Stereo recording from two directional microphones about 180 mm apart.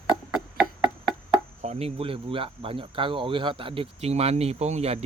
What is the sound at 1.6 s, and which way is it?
Speech, 35° right (ahead or behind).